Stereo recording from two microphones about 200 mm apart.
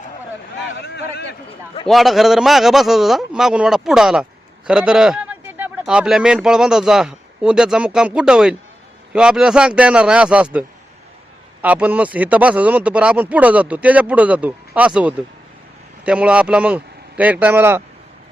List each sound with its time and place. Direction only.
0.8 s speech: 55° left (ahead or behind)
1.9 s a man's voice: centre (ahead or behind)